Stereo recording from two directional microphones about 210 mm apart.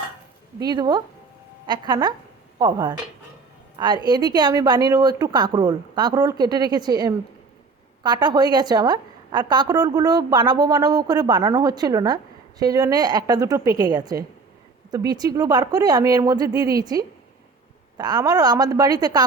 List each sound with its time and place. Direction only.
0.6 s a woman's voice: 20° right (ahead or behind)